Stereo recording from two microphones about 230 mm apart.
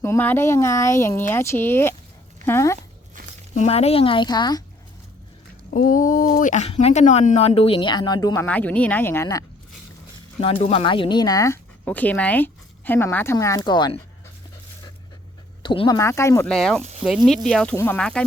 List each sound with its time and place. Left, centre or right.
0.0 s speech: centre
3.5 s speech: left
5.7 s speech: left; by 9.4 s centre
10.4 s speech: left
15.6 s speech: left; by 18.3 s centre